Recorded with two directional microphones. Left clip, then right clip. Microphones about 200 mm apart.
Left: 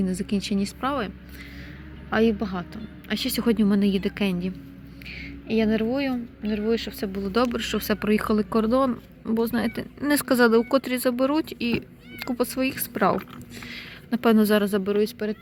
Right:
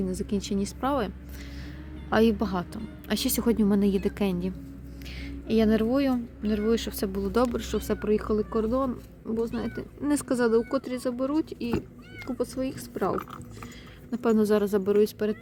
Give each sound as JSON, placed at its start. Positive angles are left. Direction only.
{"t": 0.0, "sound": "speech", "side_deg": 5}
{"t": 0.9, "sound": "a woman's voice", "side_deg": -15}
{"t": 5.2, "sound": "speech", "side_deg": -25}
{"t": 7.3, "sound": "a woman's voice", "side_deg": -10}
{"t": 7.6, "sound": "speech", "side_deg": 0}
{"t": 14.8, "sound": "speech", "side_deg": -20}